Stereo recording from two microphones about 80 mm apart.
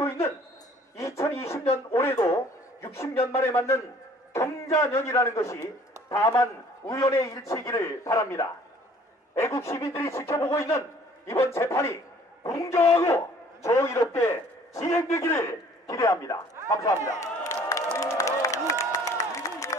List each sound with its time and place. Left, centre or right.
0.9 s a man's voice: left
2.1 s a man's voice: left
17.9 s crowd: left
18.7 s a sound: left